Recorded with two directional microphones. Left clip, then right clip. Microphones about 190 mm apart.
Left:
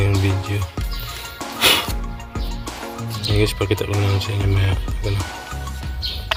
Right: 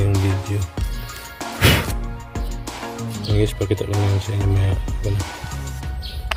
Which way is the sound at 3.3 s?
30° right (ahead or behind).